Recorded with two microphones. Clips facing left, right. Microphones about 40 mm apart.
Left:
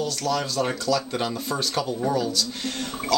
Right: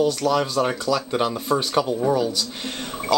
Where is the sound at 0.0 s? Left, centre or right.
Centre.